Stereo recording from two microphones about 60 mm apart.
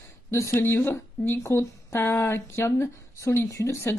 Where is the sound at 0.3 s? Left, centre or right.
Left.